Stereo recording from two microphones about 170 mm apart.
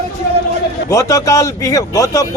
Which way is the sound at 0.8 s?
15° left (ahead or behind).